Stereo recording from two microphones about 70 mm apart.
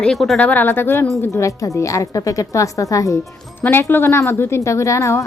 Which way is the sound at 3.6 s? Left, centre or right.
Left.